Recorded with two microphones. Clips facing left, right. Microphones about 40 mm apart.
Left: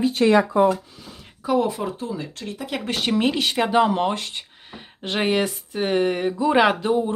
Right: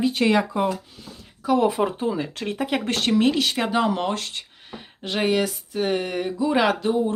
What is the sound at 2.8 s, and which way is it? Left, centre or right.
Speech, centre.